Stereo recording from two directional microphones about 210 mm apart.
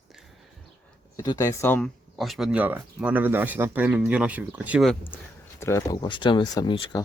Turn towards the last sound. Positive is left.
turn(degrees=20)  # may be behind; listen again after turning